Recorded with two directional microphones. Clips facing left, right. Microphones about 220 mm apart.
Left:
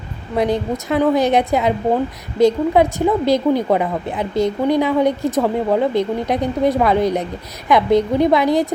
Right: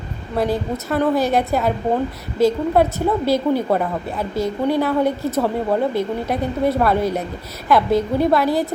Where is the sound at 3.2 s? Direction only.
15° left (ahead or behind).